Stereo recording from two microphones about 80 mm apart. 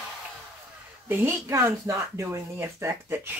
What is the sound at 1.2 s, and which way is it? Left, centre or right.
Speech, right.